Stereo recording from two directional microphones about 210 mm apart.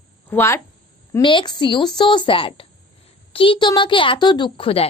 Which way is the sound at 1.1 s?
20° left (ahead or behind).